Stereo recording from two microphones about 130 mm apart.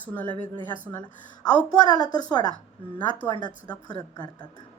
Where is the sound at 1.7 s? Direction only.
30° left (ahead or behind).